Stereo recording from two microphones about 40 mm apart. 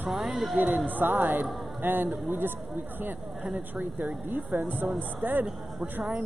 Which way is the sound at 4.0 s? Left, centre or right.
Right.